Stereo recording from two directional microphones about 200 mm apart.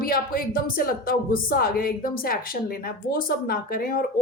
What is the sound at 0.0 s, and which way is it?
Speech, 45° left (ahead or behind).